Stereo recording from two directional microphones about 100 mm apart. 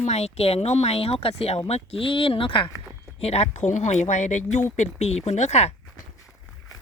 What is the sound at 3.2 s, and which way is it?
Speech, 90° left.